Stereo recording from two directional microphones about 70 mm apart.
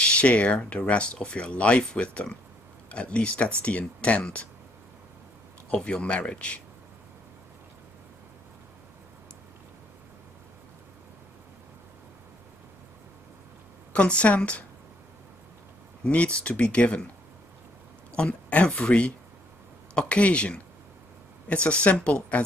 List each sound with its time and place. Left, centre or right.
0.0 s speech: centre
5.7 s speech: centre
13.9 s speech: centre
16.0 s speech: centre
18.1 s speech: centre